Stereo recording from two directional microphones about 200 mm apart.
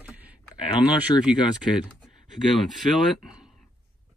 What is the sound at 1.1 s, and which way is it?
Speech, 20° left (ahead or behind).